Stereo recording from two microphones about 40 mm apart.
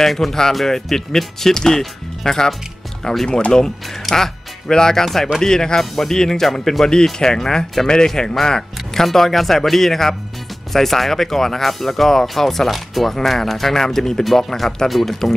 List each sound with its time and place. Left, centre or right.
0.0 s speech: centre
3.3 s speech: left
4.1 s speech: centre
6.4 s speech: centre